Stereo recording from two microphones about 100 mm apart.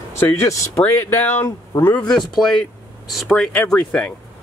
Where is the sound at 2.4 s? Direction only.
5° left (ahead or behind).